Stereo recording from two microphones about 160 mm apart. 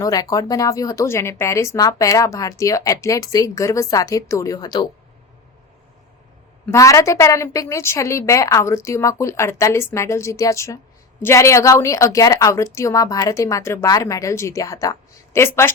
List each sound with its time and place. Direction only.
0.0 s speech: 20° left (ahead or behind)
6.7 s a woman's voice: 20° left (ahead or behind)